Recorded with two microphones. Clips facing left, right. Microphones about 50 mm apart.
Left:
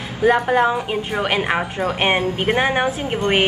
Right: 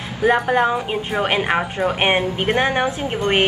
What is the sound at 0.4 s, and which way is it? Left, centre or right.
Speech, centre.